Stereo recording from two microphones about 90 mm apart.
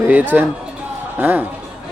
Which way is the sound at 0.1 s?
20° right (ahead or behind).